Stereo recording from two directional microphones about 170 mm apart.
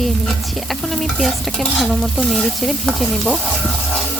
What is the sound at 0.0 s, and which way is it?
Stir, centre (ahead or behind).